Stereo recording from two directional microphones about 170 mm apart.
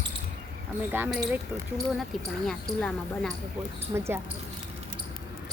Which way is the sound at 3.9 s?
15° right (ahead or behind).